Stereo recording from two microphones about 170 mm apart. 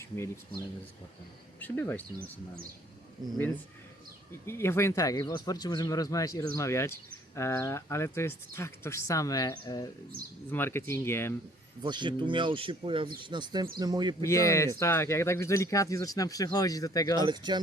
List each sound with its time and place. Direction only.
1.5 s speech: 10° left (ahead or behind)
4.3 s speech: 15° left (ahead or behind)
11.8 s speech: 25° right (ahead or behind)
14.2 s speech: 20° left (ahead or behind)
17.2 s speech: 25° right (ahead or behind)